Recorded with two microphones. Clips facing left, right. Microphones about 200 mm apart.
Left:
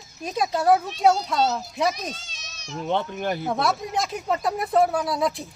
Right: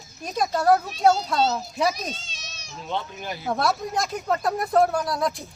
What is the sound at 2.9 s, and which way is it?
Speech, 60° left (ahead or behind).